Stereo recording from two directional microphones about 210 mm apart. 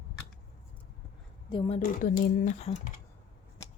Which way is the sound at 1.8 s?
45° left (ahead or behind).